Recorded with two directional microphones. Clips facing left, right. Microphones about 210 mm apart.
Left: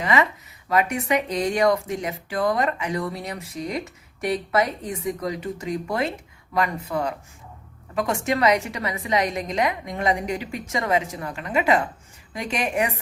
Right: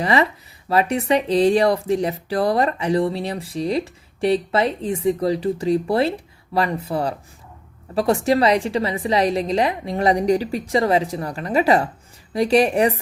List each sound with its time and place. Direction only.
0.0 s speech: 35° right (ahead or behind)